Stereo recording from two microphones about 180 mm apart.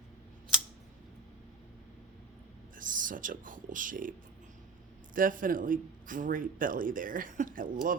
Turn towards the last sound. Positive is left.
turn(degrees=-50)  # may be behind; listen again after turning